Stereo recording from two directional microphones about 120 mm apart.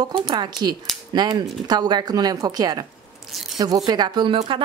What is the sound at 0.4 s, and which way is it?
A woman's voice, 35° right (ahead or behind).